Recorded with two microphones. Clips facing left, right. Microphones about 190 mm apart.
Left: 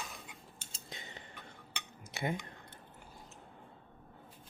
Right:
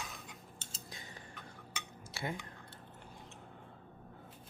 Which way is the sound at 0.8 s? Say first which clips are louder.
Left 4 dB; 25° left (ahead or behind).